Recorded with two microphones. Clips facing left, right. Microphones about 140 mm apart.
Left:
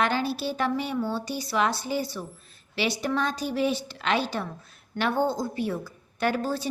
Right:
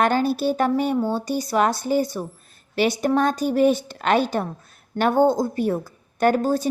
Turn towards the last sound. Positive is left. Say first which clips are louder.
# right 7 dB
turn(degrees=-45)  # may be behind; listen again after turning